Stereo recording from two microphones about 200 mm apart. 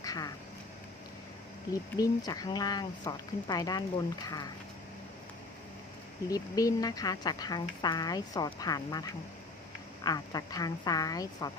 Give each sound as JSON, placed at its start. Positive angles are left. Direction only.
{"t": 0.0, "sound": "a sound", "side_deg": 20}
{"t": 2.0, "sound": "speech", "side_deg": 20}
{"t": 6.2, "sound": "speech", "side_deg": 15}